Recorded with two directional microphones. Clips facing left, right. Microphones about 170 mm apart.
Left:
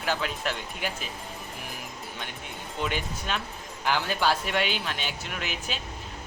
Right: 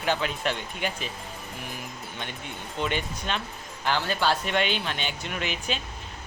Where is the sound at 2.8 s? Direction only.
5° left (ahead or behind).